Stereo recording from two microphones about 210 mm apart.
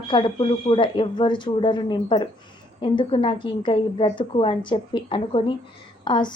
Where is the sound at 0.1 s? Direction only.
20° left (ahead or behind).